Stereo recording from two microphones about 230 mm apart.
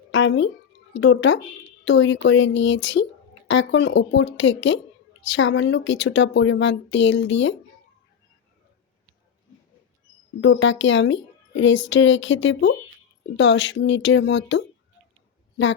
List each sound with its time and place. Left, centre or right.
0.1 s a sound: left
0.9 s speech: left
10.4 s a woman's voice: left